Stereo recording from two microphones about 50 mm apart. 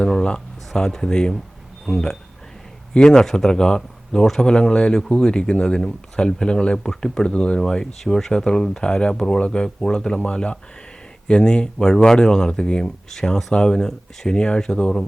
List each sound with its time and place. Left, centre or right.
0.0 s speech: centre